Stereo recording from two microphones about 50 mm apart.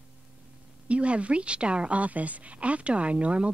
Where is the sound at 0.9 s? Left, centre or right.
Right.